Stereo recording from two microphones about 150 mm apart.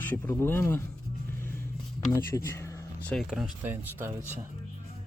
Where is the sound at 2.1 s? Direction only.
20° left (ahead or behind).